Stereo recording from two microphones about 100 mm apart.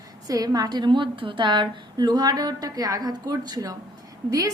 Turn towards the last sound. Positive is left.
turn(degrees=-40)  # may be behind; listen again after turning